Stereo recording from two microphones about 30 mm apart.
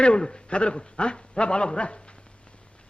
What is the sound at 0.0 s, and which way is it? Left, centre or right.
A man's voice, left.